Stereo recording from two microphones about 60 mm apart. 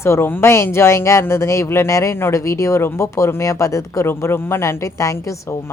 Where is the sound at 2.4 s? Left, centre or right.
Left.